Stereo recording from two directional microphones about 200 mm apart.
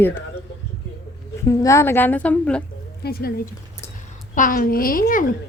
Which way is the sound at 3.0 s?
50° left (ahead or behind).